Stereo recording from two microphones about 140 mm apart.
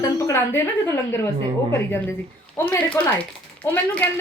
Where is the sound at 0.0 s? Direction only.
20° left (ahead or behind).